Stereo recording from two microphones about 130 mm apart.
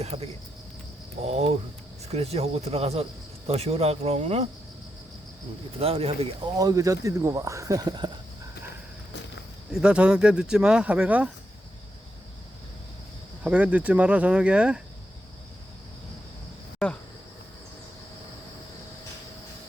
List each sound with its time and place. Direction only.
0.0 s speech: 55° right (ahead or behind)
5.8 s speech: 50° right (ahead or behind)
6.6 s speech: 25° right (ahead or behind)
9.7 s speech: 10° right (ahead or behind)
13.4 s speech: 10° right (ahead or behind)